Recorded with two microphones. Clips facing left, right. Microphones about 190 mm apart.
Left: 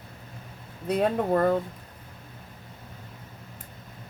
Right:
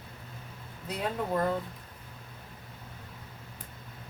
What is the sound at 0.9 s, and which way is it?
Speech, 60° left (ahead or behind).